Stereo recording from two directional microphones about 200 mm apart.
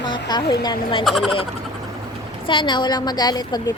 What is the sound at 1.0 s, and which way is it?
Speech, centre (ahead or behind).